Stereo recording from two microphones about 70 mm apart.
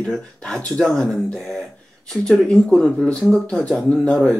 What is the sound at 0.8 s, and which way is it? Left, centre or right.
Speech, centre.